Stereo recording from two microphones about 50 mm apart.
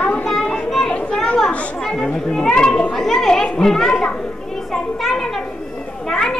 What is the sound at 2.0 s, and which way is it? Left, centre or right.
A child's voice, centre.